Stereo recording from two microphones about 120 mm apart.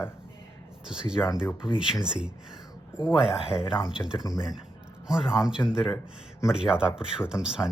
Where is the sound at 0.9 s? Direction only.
5° right (ahead or behind).